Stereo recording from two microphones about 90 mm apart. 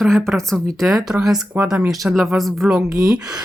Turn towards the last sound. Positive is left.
turn(degrees=-45)  # may be behind; listen again after turning